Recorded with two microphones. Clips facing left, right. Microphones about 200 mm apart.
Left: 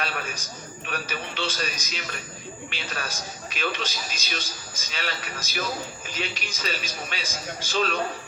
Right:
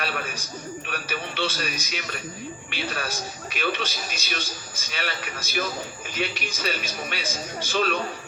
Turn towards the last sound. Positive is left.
turn(degrees=-55)  # may be behind; listen again after turning